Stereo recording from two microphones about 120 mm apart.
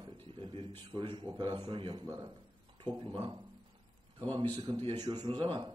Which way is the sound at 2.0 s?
30° right (ahead or behind).